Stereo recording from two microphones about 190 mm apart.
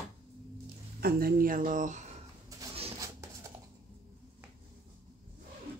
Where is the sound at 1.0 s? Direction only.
50° right (ahead or behind).